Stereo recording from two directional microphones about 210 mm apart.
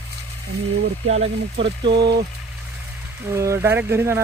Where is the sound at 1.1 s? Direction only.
30° right (ahead or behind).